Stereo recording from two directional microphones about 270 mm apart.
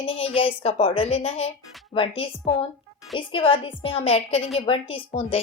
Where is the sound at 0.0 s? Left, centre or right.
Left.